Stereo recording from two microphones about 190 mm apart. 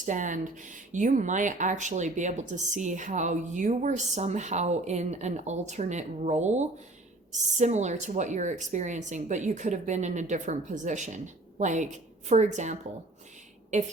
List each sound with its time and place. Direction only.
0.0 s speech: 40° right (ahead or behind)